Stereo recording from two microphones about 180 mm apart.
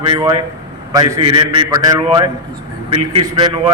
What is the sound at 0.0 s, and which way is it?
A man's voice, 25° right (ahead or behind).